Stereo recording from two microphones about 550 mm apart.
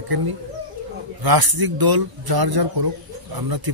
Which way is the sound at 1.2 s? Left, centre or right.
Right.